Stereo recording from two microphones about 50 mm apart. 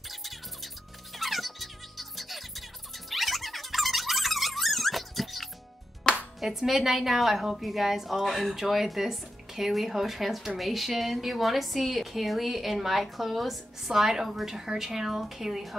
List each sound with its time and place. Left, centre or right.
0.1 s music: centre
6.0 s music: centre
6.4 s a woman's voice: centre